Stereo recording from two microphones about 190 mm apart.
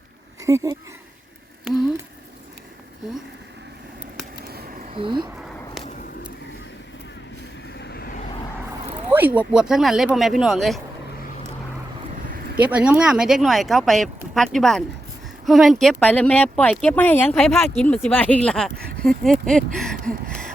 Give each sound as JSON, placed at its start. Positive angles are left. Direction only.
{"t": 0.4, "sound": "speech", "side_deg": -15}
{"t": 4.4, "sound": "a sound", "side_deg": -50}
{"t": 4.9, "sound": "speech", "side_deg": -25}
{"t": 7.8, "sound": "vehicle", "side_deg": 55}
{"t": 9.0, "sound": "speech", "side_deg": -10}
{"t": 12.5, "sound": "speech", "side_deg": -5}